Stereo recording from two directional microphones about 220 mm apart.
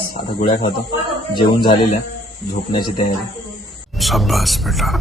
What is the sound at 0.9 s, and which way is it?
Speech, 20° left (ahead or behind).